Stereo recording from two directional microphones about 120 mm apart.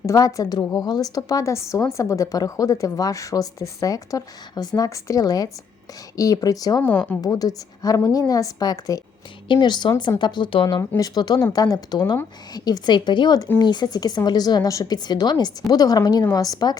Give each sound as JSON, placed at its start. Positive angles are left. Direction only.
{"t": 0.0, "sound": "a woman's voice", "side_deg": 25}
{"t": 6.8, "sound": "speech", "side_deg": 10}
{"t": 7.2, "sound": "a woman's voice", "side_deg": 30}
{"t": 10.8, "sound": "speech", "side_deg": 30}